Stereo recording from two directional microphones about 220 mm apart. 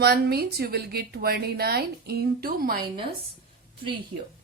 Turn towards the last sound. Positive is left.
turn(degrees=-35)  # may be behind; listen again after turning